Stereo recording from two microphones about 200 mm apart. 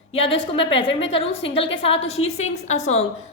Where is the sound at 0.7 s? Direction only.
65° left (ahead or behind).